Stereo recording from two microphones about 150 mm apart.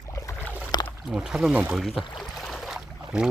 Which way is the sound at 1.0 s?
5° right (ahead or behind).